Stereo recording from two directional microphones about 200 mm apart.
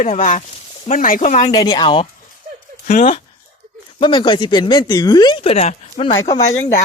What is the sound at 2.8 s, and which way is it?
Speech, 35° left (ahead or behind).